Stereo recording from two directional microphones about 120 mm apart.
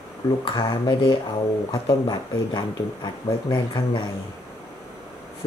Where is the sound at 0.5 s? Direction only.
40° left (ahead or behind).